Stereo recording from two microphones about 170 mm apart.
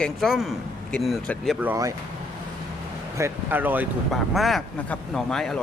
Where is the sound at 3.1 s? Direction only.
15° right (ahead or behind).